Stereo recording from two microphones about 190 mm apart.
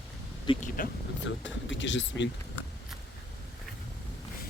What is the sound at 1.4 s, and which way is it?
Speech, 75° left (ahead or behind).